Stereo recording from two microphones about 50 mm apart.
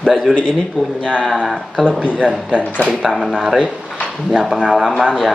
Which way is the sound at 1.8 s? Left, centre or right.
Centre.